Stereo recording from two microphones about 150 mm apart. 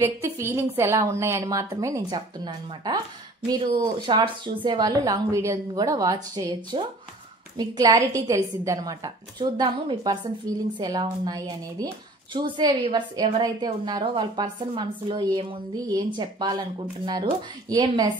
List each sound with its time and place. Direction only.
0.0 s a woman's voice: 15° right (ahead or behind)